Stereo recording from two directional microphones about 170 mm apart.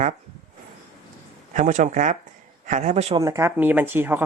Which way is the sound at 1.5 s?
45° right (ahead or behind).